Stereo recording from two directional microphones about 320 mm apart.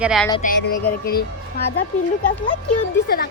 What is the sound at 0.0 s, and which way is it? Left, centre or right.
Speech, centre.